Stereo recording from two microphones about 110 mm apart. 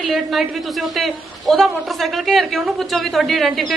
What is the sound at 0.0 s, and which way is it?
Speech, centre (ahead or behind).